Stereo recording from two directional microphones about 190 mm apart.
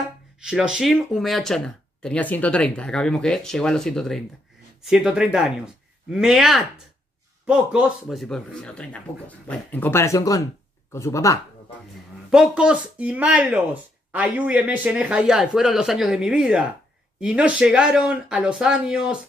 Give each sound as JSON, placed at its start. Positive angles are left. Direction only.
{"t": 0.4, "sound": "speech", "side_deg": -5}
{"t": 12.3, "sound": "speech", "side_deg": -5}